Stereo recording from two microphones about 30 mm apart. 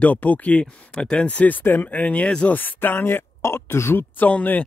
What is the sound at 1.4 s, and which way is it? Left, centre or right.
Speech, left.